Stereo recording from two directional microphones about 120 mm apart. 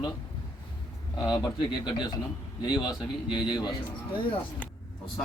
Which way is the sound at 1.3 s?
35° left (ahead or behind).